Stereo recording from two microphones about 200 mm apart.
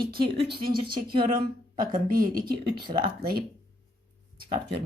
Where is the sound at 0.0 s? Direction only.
50° right (ahead or behind).